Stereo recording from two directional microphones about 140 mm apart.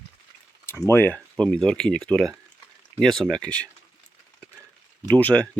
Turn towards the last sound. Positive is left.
turn(degrees=10)  # may be behind; listen again after turning